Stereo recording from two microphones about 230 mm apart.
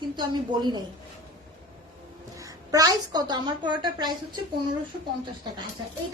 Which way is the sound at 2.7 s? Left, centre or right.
Centre.